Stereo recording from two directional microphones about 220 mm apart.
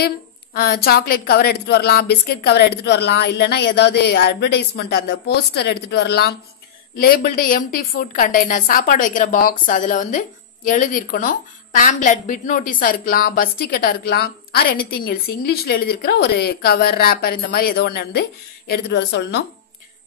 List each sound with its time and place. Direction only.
0.6 s a woman's voice: 45° left (ahead or behind)